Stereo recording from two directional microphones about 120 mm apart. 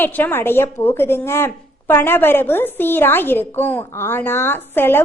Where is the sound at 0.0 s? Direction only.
15° left (ahead or behind).